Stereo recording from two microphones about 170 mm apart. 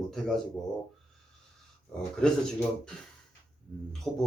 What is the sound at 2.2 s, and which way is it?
Speech, 5° left (ahead or behind).